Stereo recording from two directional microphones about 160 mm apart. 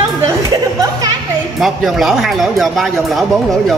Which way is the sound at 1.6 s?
Centre (ahead or behind).